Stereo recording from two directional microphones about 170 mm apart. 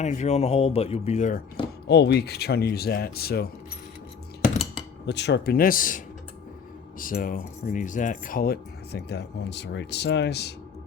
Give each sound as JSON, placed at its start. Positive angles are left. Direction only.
{"t": 0.0, "sound": "speech", "side_deg": 45}
{"t": 1.9, "sound": "speech", "side_deg": 75}
{"t": 5.0, "sound": "speech", "side_deg": 90}
{"t": 7.0, "sound": "speech", "side_deg": 55}